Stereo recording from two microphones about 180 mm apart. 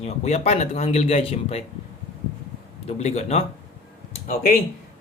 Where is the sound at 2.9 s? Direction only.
35° left (ahead or behind).